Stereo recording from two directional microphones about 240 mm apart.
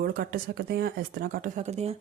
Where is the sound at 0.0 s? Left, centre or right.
Right.